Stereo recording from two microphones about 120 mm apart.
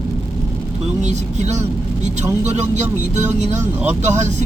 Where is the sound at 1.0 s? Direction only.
70° right (ahead or behind).